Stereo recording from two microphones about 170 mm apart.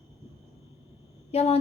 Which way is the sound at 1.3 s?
35° left (ahead or behind).